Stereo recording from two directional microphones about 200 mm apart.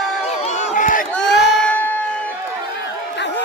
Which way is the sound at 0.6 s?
40° left (ahead or behind).